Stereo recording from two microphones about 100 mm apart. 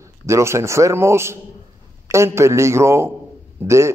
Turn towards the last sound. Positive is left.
turn(degrees=-20)  # may be behind; listen again after turning